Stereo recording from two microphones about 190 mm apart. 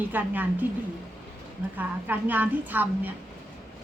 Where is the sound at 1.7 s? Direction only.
10° right (ahead or behind).